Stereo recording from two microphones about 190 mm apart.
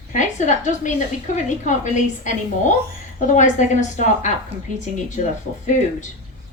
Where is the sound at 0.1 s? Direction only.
40° left (ahead or behind).